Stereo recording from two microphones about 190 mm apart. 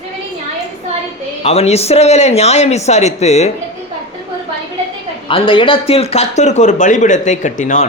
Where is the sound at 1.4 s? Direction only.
35° left (ahead or behind).